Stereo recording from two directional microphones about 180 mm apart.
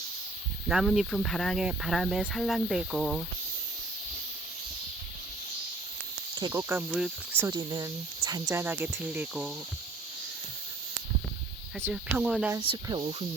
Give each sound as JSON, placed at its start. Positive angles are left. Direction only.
{"t": 0.7, "sound": "speech", "side_deg": 0}
{"t": 6.5, "sound": "speech", "side_deg": -15}
{"t": 7.4, "sound": "speech", "side_deg": -25}
{"t": 11.8, "sound": "speech", "side_deg": -10}
{"t": 12.5, "sound": "speech", "side_deg": -25}